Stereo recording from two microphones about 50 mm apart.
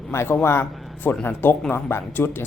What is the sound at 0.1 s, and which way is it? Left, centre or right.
Speech, left.